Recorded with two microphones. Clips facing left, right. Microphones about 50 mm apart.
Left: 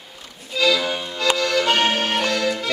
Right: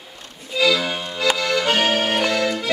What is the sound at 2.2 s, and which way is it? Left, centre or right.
Accordion, right.